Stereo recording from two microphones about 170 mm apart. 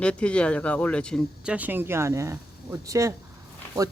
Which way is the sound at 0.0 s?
5° left (ahead or behind).